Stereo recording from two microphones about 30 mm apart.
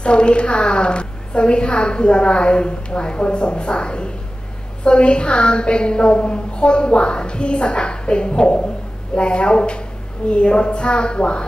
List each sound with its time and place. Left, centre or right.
0.0 s a woman's voice: left